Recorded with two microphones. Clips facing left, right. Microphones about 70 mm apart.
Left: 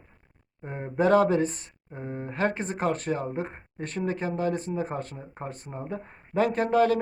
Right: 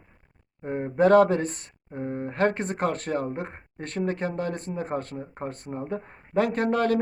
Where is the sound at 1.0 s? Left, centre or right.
Right.